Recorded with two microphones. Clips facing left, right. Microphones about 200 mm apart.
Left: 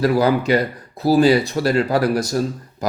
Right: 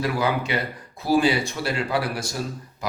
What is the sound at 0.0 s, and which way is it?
Speech, 40° left (ahead or behind).